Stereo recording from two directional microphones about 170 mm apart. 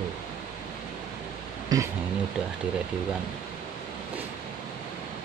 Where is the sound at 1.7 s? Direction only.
25° right (ahead or behind).